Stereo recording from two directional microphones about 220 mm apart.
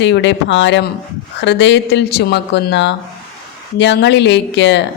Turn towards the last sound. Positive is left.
turn(degrees=55)  # may be behind; listen again after turning